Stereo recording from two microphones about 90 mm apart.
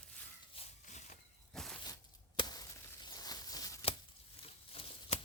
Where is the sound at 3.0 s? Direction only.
45° left (ahead or behind).